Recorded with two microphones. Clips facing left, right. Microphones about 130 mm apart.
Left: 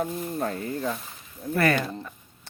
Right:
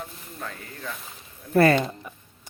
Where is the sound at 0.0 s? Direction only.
45° left (ahead or behind).